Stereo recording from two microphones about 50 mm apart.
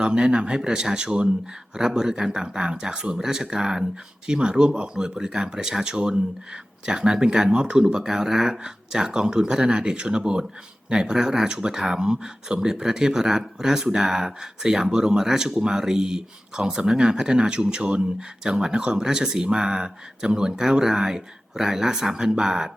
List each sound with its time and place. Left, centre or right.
0.0 s speech: centre